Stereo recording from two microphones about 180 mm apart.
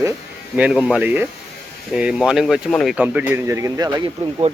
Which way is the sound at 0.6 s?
5° right (ahead or behind).